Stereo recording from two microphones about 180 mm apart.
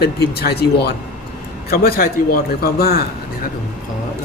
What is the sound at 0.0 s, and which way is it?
Speech, 65° left (ahead or behind).